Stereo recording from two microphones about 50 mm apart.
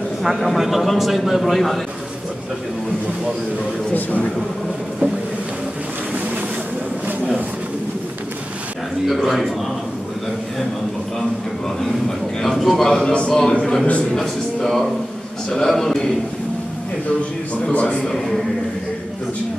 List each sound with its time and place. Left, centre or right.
0.2 s a man's voice: centre
9.0 s a man's voice: centre
12.4 s a man's voice: centre
13.0 s a man's voice: centre
17.6 s a man's voice: centre